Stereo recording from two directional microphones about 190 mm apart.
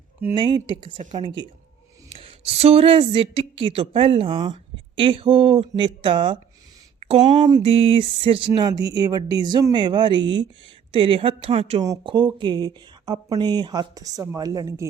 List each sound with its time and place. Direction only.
0.3 s speech: 25° right (ahead or behind)
7.0 s speech: 35° right (ahead or behind)
7.4 s speech: 25° right (ahead or behind)